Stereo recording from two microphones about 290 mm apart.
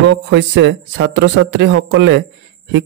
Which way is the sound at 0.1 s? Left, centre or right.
Right.